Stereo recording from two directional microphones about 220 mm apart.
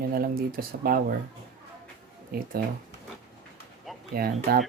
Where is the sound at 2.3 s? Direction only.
40° right (ahead or behind).